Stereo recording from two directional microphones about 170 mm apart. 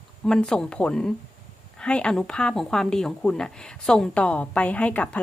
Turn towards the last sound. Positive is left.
turn(degrees=10)  # may be behind; listen again after turning